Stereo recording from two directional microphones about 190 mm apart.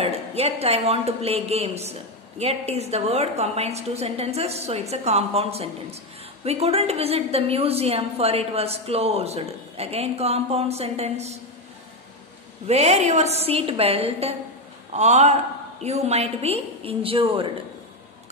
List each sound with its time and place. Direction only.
0.0 s a woman's voice: 35° right (ahead or behind)
12.6 s a woman's voice: 35° right (ahead or behind)